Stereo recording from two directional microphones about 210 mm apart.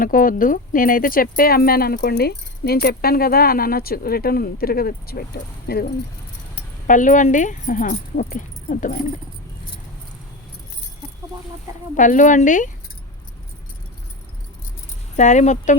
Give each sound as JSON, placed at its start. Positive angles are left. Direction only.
{"t": 0.0, "sound": "speech", "side_deg": 40}
{"t": 6.8, "sound": "speech", "side_deg": 40}
{"t": 11.9, "sound": "speech", "side_deg": 40}
{"t": 15.1, "sound": "speech", "side_deg": 35}